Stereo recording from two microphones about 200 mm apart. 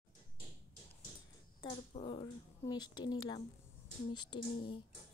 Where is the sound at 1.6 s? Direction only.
25° left (ahead or behind).